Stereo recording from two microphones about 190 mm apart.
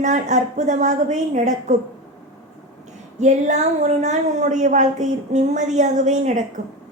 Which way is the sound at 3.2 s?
40° right (ahead or behind).